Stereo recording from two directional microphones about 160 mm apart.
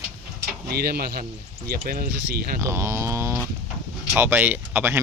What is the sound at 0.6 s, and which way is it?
Speech, 75° right (ahead or behind).